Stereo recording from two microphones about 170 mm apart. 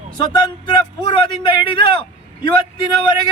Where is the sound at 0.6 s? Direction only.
30° left (ahead or behind).